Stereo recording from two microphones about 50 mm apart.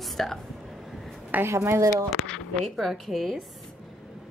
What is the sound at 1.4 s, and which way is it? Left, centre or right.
Speech, right.